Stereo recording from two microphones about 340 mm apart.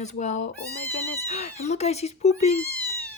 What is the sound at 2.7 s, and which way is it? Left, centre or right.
Cat, right.